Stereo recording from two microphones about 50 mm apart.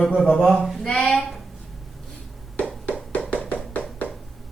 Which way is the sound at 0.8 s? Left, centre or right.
Centre.